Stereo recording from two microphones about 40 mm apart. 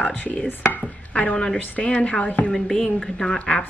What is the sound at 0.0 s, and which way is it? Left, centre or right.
Chopping, left.